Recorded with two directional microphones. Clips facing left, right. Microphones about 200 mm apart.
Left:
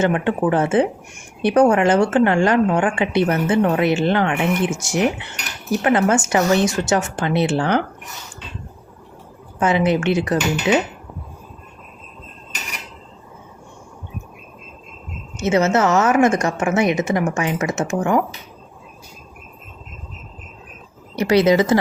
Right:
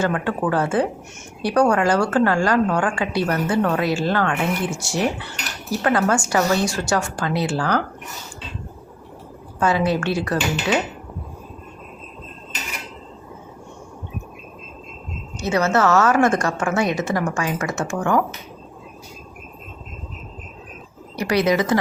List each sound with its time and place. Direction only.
0.0 s speech: 20° left (ahead or behind)
9.6 s speech: 20° left (ahead or behind)
15.4 s speech: 20° left (ahead or behind)
21.2 s speech: 25° left (ahead or behind)